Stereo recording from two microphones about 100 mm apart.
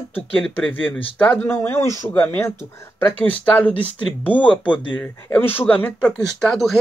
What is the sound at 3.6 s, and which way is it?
Speech, 15° left (ahead or behind).